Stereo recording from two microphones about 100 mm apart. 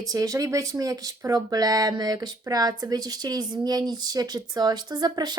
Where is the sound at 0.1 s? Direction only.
35° right (ahead or behind).